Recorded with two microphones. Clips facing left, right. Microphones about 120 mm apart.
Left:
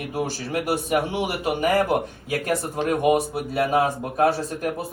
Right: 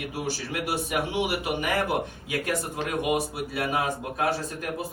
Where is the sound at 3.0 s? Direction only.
45° left (ahead or behind).